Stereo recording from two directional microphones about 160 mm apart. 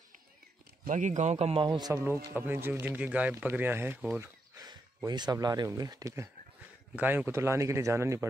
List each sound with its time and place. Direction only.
0.8 s a man's voice: 50° right (ahead or behind); by 4.3 s 10° right (ahead or behind)
4.6 s speech: 25° right (ahead or behind)
7.0 s a man's voice: 10° right (ahead or behind)